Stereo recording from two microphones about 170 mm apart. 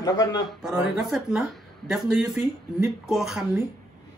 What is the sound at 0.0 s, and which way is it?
Speech, 25° left (ahead or behind).